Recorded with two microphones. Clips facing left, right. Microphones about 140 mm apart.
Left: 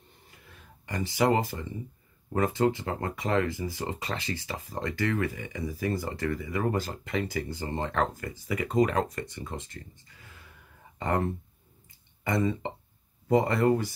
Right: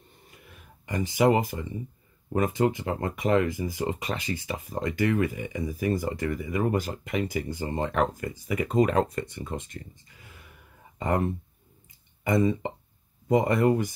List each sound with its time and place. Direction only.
0.6 s speech: 20° right (ahead or behind)